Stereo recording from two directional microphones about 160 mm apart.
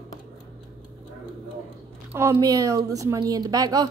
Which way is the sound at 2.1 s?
20° right (ahead or behind).